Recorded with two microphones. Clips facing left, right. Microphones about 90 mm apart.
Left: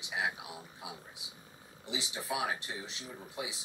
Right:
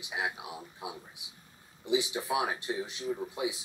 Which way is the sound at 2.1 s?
25° right (ahead or behind).